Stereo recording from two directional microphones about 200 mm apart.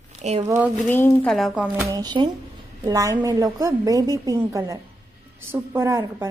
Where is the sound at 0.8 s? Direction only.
10° left (ahead or behind).